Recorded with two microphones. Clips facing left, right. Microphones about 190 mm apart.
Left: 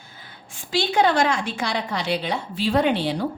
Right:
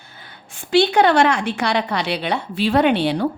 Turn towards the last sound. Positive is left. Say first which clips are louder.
# right 4 dB
turn(degrees=-65)  # may be behind; listen again after turning